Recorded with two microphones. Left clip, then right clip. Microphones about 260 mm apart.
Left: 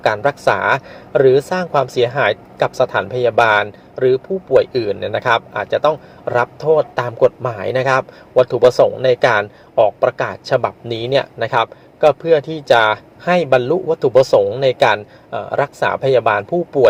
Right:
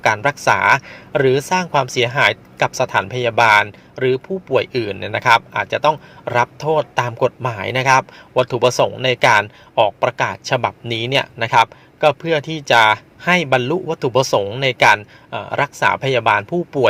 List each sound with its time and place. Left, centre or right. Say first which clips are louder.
0.0 s speech: left 1 dB; right
3.3 s speech: right 2 dB; right
4.0 s speech: left 3 dB; right